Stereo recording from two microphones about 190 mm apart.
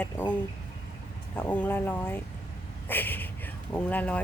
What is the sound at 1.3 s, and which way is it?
Speech, 10° left (ahead or behind).